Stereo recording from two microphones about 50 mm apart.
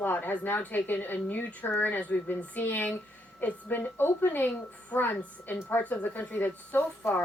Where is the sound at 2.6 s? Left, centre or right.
Left.